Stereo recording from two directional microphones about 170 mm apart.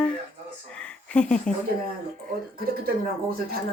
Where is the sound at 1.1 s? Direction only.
5° left (ahead or behind).